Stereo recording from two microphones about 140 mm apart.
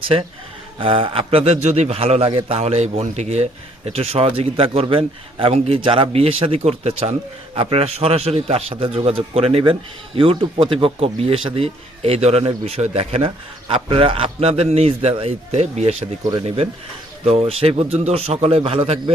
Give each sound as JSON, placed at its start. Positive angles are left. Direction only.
{"t": 0.8, "sound": "speech", "side_deg": -40}
{"t": 17.2, "sound": "speech", "side_deg": -45}